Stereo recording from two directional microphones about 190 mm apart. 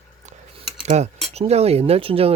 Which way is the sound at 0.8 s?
35° right (ahead or behind).